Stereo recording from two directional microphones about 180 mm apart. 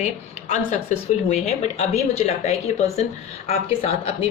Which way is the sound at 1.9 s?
35° left (ahead or behind).